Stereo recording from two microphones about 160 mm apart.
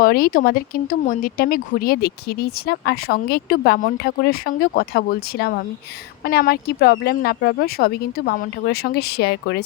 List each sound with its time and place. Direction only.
0.0 s speech: 65° left (ahead or behind); by 9.6 s 90° left